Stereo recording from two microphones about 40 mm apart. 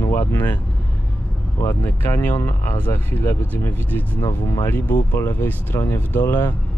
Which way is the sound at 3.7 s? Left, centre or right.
Left.